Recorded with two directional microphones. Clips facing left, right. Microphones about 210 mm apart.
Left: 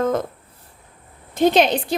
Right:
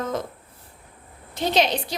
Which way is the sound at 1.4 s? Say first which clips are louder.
Left 6 dB; 50° left (ahead or behind).